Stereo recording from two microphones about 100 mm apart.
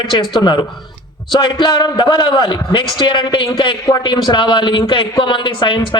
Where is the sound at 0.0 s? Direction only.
50° left (ahead or behind).